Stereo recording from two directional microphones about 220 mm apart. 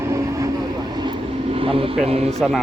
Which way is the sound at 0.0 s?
15° right (ahead or behind).